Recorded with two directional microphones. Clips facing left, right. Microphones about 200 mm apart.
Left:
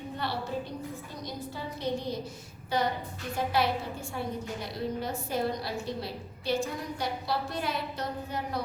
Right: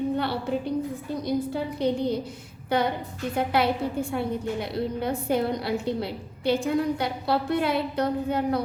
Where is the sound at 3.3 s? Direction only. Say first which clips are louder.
Right 4 dB; 60° right (ahead or behind).